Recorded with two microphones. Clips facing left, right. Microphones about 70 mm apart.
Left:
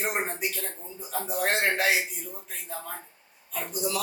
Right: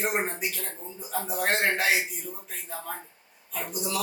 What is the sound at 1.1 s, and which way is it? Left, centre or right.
Speech, centre.